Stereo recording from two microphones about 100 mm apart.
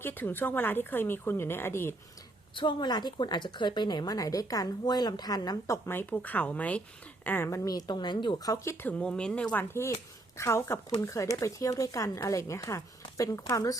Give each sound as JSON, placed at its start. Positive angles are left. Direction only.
{"t": 0.0, "sound": "a woman's voice", "side_deg": 20}
{"t": 2.6, "sound": "a woman's voice", "side_deg": 55}
{"t": 8.4, "sound": "a woman's voice", "side_deg": 30}
{"t": 8.9, "sound": "speech", "side_deg": 10}
{"t": 9.7, "sound": "a woman's voice", "side_deg": 30}